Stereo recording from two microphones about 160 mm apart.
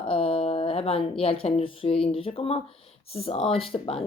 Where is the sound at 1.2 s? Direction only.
35° left (ahead or behind).